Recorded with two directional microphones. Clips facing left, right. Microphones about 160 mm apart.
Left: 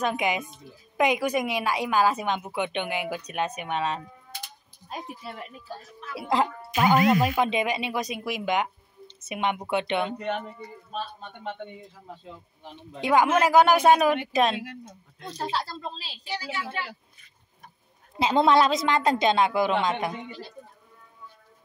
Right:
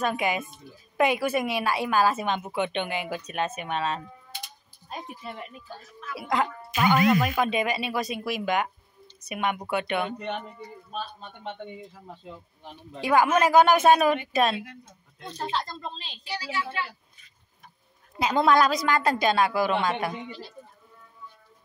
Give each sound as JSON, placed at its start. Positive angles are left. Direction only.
{"t": 0.0, "sound": "a woman's voice", "side_deg": 15}
{"t": 4.8, "sound": "speech", "side_deg": 5}
{"t": 5.9, "sound": "speech", "side_deg": 30}
{"t": 12.7, "sound": "a woman's voice", "side_deg": 20}
{"t": 18.2, "sound": "speech", "side_deg": 25}